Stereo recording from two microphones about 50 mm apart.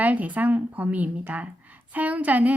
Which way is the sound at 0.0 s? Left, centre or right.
Right.